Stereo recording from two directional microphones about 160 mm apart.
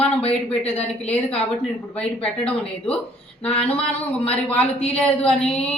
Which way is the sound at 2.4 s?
5° left (ahead or behind).